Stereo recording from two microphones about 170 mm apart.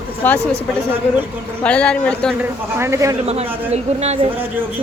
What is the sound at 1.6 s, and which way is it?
Speech, 5° left (ahead or behind).